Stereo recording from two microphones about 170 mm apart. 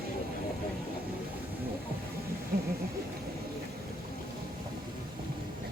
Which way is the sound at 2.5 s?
65° right (ahead or behind).